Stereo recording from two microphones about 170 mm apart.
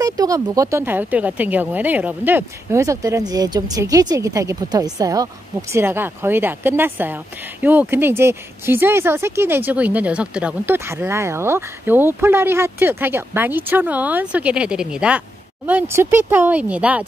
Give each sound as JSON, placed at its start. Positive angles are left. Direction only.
{"t": 0.0, "sound": "speech", "side_deg": -20}